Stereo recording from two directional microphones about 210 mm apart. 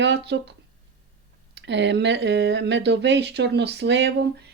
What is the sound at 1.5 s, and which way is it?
Speech, 55° right (ahead or behind).